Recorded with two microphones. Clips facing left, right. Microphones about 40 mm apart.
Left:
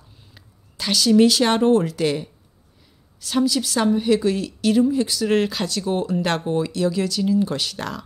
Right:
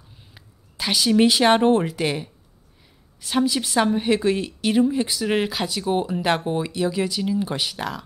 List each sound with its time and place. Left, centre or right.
0.3 s a woman's voice: centre